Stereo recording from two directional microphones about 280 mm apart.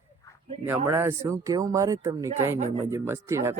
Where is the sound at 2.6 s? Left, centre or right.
Right.